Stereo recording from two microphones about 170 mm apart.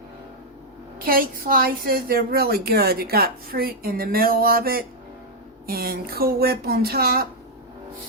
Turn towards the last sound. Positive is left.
turn(degrees=-65)  # may be behind; listen again after turning